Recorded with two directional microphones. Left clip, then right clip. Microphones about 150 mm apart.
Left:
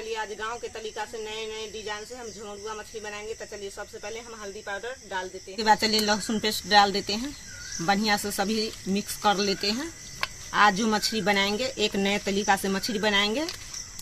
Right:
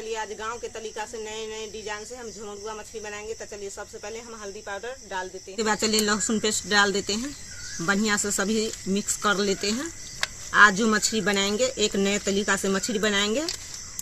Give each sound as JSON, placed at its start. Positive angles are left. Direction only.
{"t": 0.0, "sound": "speech", "side_deg": -5}
{"t": 4.6, "sound": "speech", "side_deg": -5}
{"t": 5.6, "sound": "speech", "side_deg": 25}